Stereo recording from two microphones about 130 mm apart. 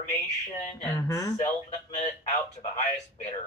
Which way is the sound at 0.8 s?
20° left (ahead or behind).